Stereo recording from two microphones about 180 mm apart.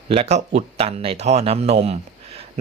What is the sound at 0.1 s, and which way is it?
Speech, 35° right (ahead or behind).